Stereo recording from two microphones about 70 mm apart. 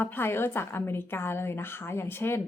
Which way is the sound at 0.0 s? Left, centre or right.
Left.